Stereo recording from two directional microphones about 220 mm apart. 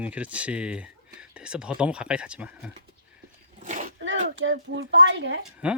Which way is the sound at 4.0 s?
60° right (ahead or behind).